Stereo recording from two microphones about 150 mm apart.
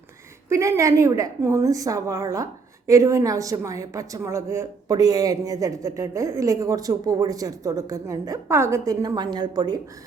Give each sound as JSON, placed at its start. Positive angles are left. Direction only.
{"t": 0.4, "sound": "a woman's voice", "side_deg": -20}